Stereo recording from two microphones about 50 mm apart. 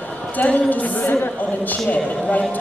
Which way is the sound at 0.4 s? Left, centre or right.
Left.